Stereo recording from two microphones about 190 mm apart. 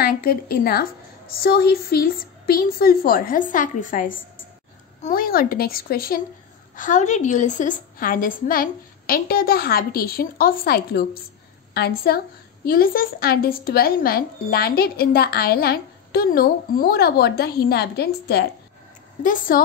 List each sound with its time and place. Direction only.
0.0 s speech: 55° left (ahead or behind)
6.8 s speech: 40° left (ahead or behind); by 18.5 s 55° left (ahead or behind)
19.2 s speech: 45° left (ahead or behind)